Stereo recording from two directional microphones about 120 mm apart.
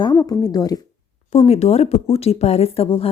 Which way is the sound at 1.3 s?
60° left (ahead or behind).